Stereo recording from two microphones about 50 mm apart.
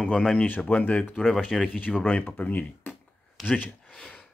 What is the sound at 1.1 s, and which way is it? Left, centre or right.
Speech, centre.